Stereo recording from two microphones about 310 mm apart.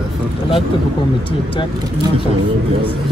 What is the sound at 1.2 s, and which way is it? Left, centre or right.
Speech, centre.